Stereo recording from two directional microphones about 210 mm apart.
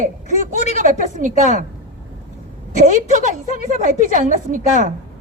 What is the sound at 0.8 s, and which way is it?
Speech, 40° right (ahead or behind).